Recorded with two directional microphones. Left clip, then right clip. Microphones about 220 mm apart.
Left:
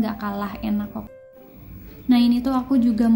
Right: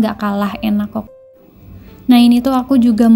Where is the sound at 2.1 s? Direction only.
40° right (ahead or behind).